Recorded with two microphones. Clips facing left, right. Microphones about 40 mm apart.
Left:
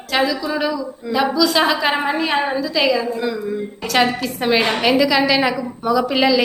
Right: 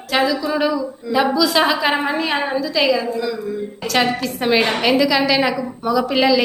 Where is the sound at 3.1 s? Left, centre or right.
Left.